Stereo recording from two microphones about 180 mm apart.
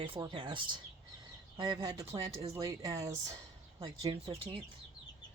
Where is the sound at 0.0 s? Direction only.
25° right (ahead or behind).